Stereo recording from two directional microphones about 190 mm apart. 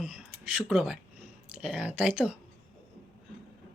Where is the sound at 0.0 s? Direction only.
5° right (ahead or behind).